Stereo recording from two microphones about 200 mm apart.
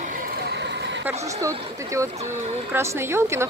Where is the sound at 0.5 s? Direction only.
60° right (ahead or behind).